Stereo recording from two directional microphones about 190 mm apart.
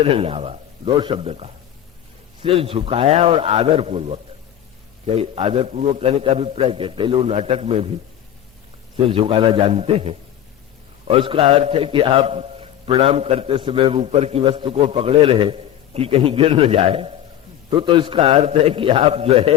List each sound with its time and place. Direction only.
0.0 s a man's voice: 30° right (ahead or behind)
9.0 s a man's voice: 30° right (ahead or behind)